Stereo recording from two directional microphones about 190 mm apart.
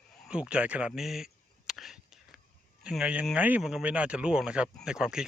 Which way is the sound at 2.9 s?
5° right (ahead or behind).